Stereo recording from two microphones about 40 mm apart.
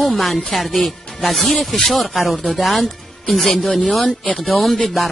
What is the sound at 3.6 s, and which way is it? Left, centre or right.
Speech, centre.